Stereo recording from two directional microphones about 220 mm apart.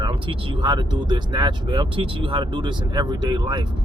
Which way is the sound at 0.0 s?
25° right (ahead or behind).